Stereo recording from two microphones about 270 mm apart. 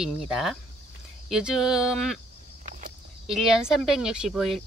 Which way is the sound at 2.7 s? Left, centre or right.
Right.